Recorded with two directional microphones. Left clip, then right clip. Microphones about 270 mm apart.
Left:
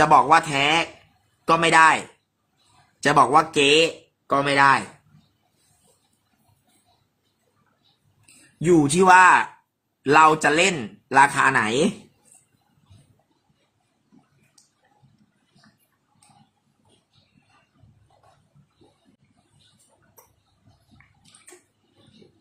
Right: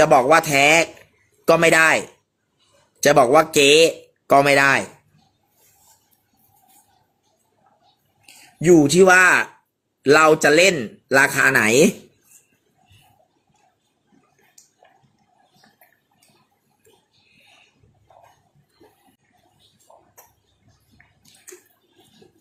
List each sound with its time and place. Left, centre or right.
0.0 s speech: centre
3.1 s speech: centre
9.0 s speech: centre
11.6 s speech: right